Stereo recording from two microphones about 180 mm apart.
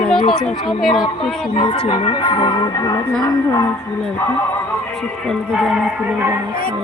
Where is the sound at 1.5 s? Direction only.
30° left (ahead or behind).